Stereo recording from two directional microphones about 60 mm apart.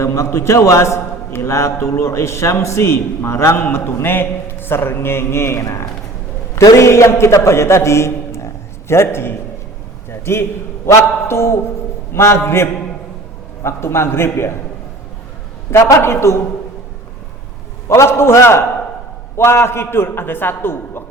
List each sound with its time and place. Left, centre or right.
0.0 s a sound: left
0.3 s a man's voice: left
10.9 s a man's voice: left
15.9 s a man's voice: left
17.8 s a man's voice: left